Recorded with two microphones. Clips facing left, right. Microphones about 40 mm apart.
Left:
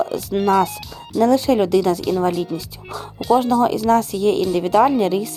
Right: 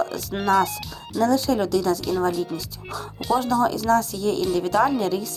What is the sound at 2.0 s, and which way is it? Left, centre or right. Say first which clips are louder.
Speech: left 4 dB; centre.